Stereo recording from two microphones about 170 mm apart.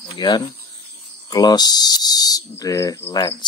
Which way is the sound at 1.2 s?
25° left (ahead or behind).